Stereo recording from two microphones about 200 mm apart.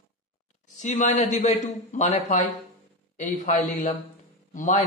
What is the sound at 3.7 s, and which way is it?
Speech, 40° left (ahead or behind).